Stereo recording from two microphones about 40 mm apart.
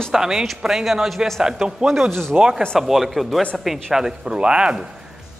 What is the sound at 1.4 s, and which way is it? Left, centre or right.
A man's voice, centre.